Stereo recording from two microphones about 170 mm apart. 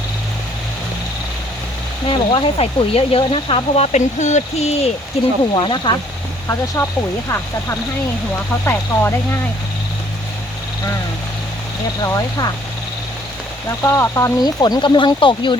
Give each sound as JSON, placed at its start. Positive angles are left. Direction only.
{"t": 2.0, "sound": "speech", "side_deg": 30}
{"t": 5.5, "sound": "speech", "side_deg": 30}
{"t": 6.8, "sound": "speech", "side_deg": 15}
{"t": 8.6, "sound": "speech", "side_deg": 15}
{"t": 12.0, "sound": "speech", "side_deg": 15}
{"t": 13.8, "sound": "speech", "side_deg": 15}